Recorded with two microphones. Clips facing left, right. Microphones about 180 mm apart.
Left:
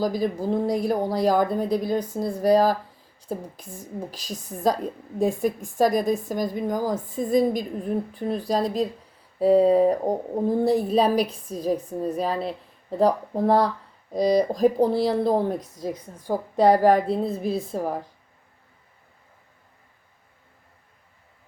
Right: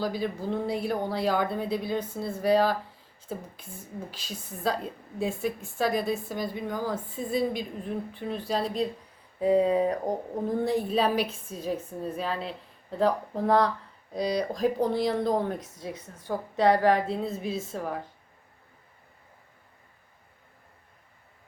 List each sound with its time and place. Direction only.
0.0 s speech: 40° left (ahead or behind)
4.1 s a woman's voice: 40° left (ahead or behind)
17.5 s a woman's voice: 10° left (ahead or behind)